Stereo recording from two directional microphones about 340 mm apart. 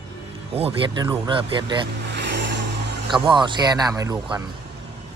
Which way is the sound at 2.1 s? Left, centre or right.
Right.